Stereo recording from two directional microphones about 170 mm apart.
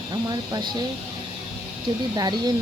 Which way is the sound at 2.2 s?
25° right (ahead or behind).